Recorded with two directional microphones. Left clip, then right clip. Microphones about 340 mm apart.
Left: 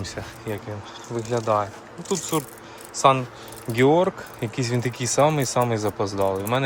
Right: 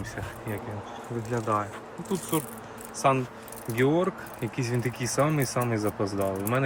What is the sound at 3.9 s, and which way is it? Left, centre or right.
Speech, centre.